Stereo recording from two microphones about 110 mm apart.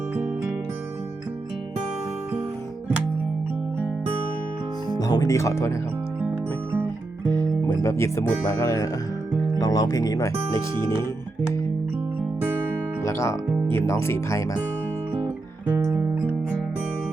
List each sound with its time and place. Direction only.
4.9 s speech: 35° left (ahead or behind)
7.3 s speech: 20° left (ahead or behind)
12.4 s music: 15° right (ahead or behind)
13.1 s music: 25° left (ahead or behind)
13.7 s speech: 25° left (ahead or behind)